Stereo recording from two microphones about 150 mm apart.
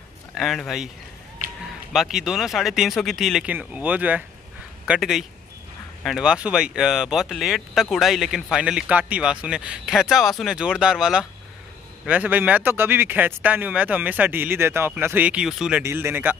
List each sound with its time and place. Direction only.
0.3 s speech: centre (ahead or behind)